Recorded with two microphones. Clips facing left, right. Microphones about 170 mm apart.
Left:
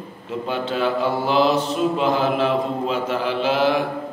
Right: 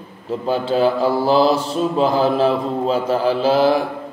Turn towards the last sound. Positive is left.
turn(degrees=-35)  # may be behind; listen again after turning